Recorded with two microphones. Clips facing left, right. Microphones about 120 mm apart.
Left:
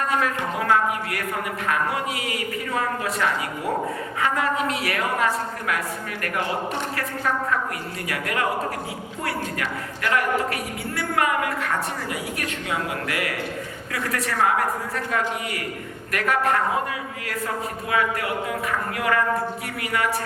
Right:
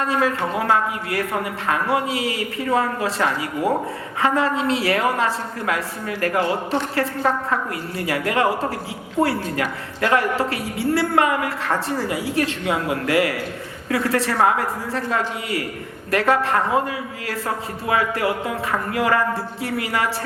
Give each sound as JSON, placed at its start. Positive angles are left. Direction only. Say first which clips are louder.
{"t": 1.6, "sound": "a woman's voice", "louder": "right 3 dB", "side_deg": -30}
{"t": 6.9, "sound": "a woman's voice", "louder": "right 6 dB", "side_deg": -30}
{"t": 17.8, "sound": "a woman's voice", "louder": "right 4 dB", "side_deg": -30}